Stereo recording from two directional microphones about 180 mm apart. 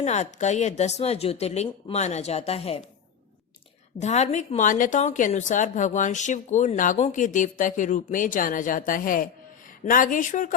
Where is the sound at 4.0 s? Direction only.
40° left (ahead or behind).